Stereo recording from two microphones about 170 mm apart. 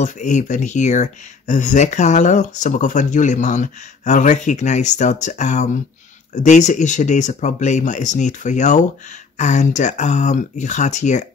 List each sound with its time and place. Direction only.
0.0 s speech: 45° left (ahead or behind)